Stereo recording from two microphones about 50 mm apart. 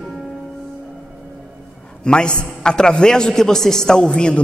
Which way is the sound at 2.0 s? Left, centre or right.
Centre.